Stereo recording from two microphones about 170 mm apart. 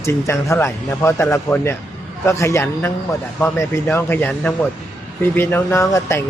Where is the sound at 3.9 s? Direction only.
10° left (ahead or behind).